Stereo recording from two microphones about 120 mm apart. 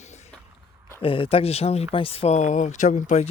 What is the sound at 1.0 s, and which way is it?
Speech, 45° left (ahead or behind).